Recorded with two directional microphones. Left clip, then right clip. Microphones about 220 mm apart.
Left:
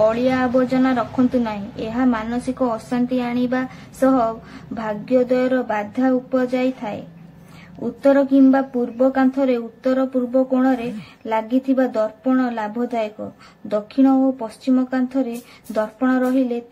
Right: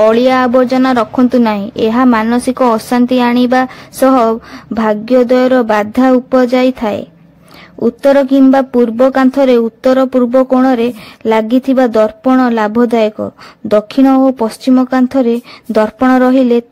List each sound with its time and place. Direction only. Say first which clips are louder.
0.0 s a woman's voice: right 9 dB; 45° right (ahead or behind)
8.0 s a woman's voice: right 6 dB; 45° right (ahead or behind)